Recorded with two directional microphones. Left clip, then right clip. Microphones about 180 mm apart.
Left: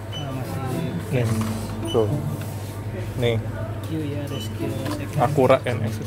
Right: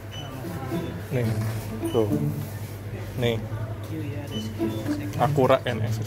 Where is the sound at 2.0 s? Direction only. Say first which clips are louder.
Left 3 dB; 10° right (ahead or behind).